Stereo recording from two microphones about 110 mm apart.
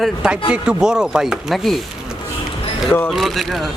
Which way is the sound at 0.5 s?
10° right (ahead or behind).